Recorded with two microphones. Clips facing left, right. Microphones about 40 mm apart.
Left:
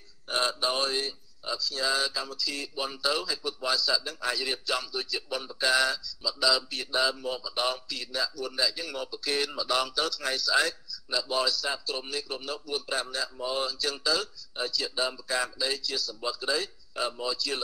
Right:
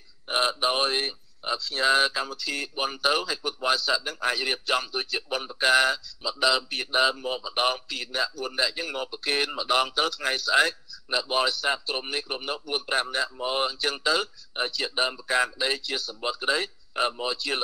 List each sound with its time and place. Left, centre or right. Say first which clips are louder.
0.3 s speech: right 3 dB; right